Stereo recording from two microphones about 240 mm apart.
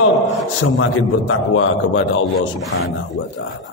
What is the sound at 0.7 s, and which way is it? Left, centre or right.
A man's voice, left.